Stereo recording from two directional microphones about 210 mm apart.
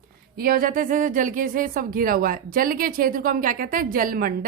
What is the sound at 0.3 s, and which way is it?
A woman's voice, 45° right (ahead or behind).